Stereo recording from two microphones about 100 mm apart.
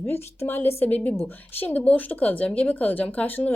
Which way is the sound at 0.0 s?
25° left (ahead or behind).